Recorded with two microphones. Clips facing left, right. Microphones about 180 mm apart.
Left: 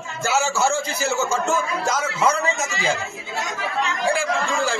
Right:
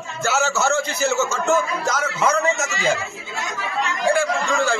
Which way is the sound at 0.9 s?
35° left (ahead or behind).